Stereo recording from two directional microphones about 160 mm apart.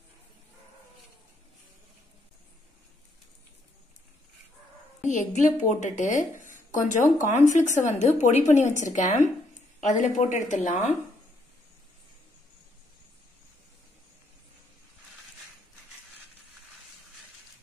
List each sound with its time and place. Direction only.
5.0 s a woman's voice: 50° left (ahead or behind)